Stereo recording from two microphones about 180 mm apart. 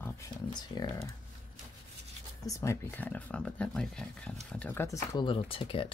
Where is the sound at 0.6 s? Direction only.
20° left (ahead or behind).